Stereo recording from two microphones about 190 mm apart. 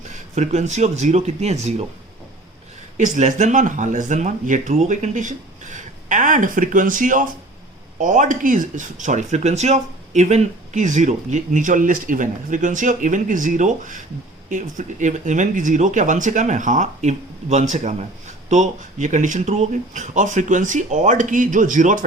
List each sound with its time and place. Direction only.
0.1 s speech: 35° right (ahead or behind)
3.0 s speech: 40° right (ahead or behind)